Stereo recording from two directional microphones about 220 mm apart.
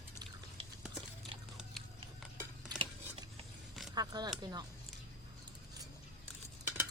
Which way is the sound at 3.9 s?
20° right (ahead or behind).